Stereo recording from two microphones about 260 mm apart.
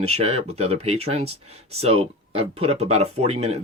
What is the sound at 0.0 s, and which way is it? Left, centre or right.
Speech, right.